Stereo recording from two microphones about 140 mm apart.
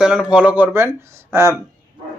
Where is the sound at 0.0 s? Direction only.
5° right (ahead or behind).